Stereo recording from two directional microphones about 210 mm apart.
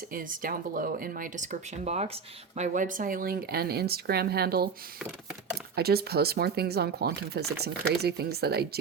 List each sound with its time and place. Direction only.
0.1 s speech: 40° right (ahead or behind)
5.7 s speech: 50° right (ahead or behind)